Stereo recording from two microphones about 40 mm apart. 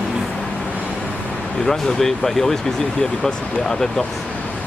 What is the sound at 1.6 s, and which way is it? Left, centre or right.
Speech, centre.